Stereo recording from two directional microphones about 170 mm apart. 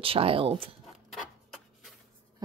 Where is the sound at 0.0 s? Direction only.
35° right (ahead or behind).